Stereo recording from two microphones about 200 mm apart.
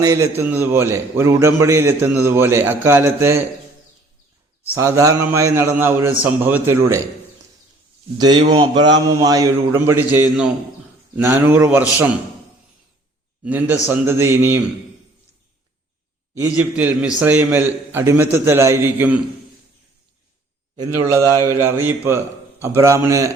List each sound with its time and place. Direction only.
0.0 s a man's voice: 15° right (ahead or behind)
4.7 s a man's voice: 15° right (ahead or behind)
8.2 s a man's voice: 20° right (ahead or behind)
13.4 s a man's voice: 10° right (ahead or behind)
16.3 s a man's voice: 10° right (ahead or behind)
20.7 s a man's voice: 15° right (ahead or behind)